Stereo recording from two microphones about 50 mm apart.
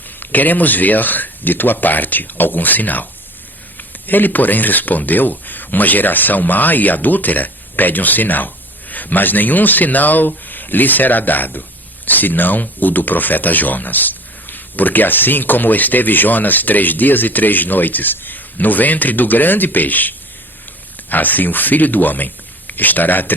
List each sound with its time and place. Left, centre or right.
0.2 s speech: left